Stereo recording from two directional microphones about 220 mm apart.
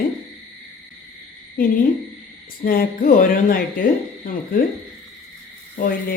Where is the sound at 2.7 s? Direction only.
40° left (ahead or behind).